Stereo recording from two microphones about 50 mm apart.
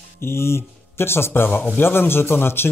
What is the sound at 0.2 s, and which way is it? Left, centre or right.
Speech, left.